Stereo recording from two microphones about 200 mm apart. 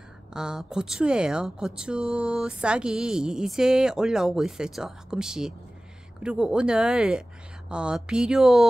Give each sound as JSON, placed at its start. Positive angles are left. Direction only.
{"t": 0.3, "sound": "speech", "side_deg": -5}